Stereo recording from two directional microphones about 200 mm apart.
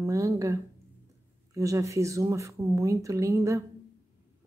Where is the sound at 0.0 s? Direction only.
15° right (ahead or behind).